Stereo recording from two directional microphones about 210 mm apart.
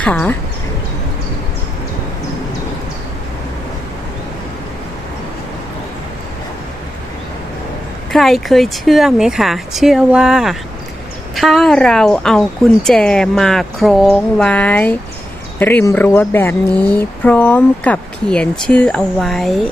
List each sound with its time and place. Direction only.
0.0 s speech: 5° left (ahead or behind)
8.1 s speech: centre (ahead or behind)